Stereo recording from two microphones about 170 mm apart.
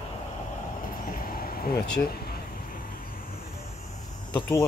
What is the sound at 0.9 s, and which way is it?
Vehicle, 55° left (ahead or behind).